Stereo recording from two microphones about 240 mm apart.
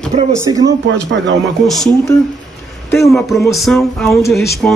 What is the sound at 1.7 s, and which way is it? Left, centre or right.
Speech, centre.